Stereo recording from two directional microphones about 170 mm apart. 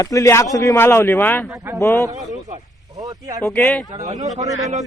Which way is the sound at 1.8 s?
15° left (ahead or behind).